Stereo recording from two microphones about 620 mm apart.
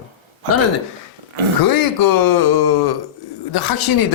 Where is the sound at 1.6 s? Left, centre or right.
Left.